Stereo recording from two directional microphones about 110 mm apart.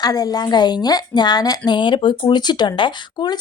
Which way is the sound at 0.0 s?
35° left (ahead or behind).